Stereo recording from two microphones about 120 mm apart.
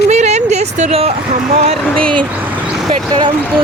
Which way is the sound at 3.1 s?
40° right (ahead or behind).